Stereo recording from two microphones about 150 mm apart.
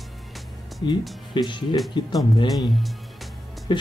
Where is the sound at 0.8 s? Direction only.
30° left (ahead or behind).